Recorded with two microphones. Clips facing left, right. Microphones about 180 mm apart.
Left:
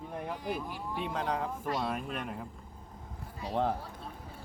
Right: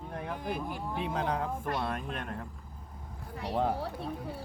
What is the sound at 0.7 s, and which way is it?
Speech, 50° right (ahead or behind).